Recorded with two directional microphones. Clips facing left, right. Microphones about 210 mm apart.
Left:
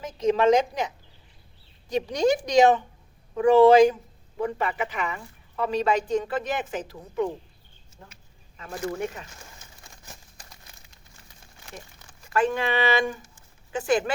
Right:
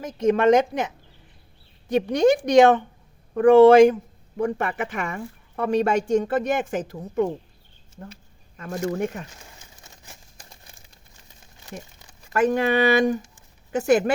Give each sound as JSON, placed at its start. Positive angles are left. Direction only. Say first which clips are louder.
{"t": 0.0, "sound": "a woman's voice", "louder": "right 2 dB", "side_deg": -50}
{"t": 1.9, "sound": "a woman's voice", "louder": "right 5 dB", "side_deg": -55}
{"t": 8.5, "sound": "speech", "louder": "right 4 dB", "side_deg": -45}
{"t": 10.5, "sound": "a sound", "louder": "right 2 dB", "side_deg": -30}
{"t": 12.3, "sound": "speech", "louder": "right 4 dB", "side_deg": -40}